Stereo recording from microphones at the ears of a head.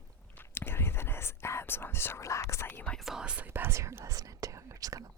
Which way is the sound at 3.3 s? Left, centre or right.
Right.